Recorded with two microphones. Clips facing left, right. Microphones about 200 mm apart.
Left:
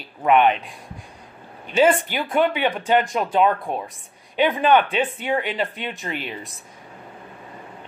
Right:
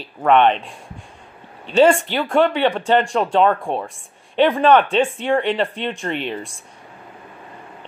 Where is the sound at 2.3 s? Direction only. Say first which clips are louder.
Right 4 dB; 5° left (ahead or behind).